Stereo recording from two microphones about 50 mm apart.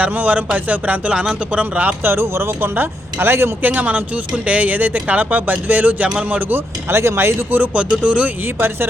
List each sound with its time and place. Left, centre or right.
0.0 s speech: right
1.1 s speech: centre
2.0 s speech: right
3.6 s speech: right
6.9 s speech: right
7.8 s speech: right
8.5 s speech: right